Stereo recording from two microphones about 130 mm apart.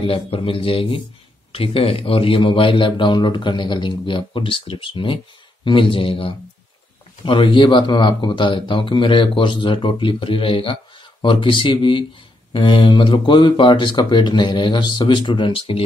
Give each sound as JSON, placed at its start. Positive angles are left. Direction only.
{"t": 0.0, "sound": "a man's voice", "side_deg": 45}